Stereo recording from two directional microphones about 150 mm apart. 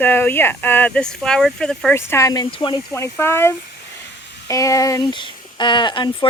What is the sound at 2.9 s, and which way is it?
Speech, 15° left (ahead or behind).